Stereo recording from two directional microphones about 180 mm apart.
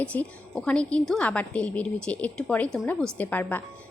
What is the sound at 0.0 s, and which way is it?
A woman's voice, 5° left (ahead or behind).